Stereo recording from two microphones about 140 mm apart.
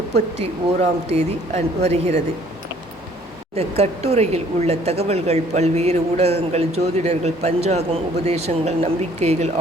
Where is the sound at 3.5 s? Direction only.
50° right (ahead or behind).